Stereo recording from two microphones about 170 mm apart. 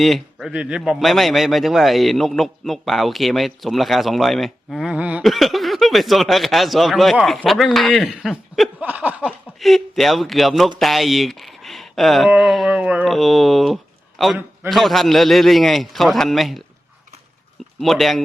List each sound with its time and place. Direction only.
0.0 s a man's voice: centre (ahead or behind)
17.7 s speech: centre (ahead or behind)